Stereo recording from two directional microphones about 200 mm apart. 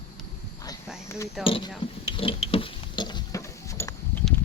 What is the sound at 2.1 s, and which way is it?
Patter, 25° left (ahead or behind).